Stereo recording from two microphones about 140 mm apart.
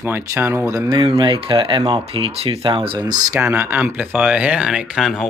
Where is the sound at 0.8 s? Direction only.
40° right (ahead or behind).